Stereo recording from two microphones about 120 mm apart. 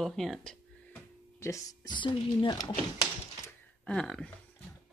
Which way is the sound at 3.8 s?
5° left (ahead or behind).